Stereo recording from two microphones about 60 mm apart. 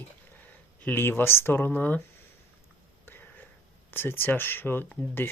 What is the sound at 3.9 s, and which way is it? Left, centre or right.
Speech, left.